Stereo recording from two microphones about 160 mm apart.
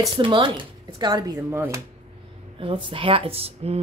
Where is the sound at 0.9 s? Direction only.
25° right (ahead or behind).